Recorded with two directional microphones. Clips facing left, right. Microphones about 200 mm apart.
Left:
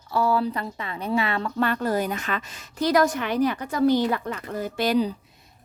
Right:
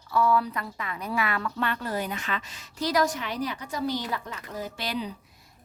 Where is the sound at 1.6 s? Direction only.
45° left (ahead or behind).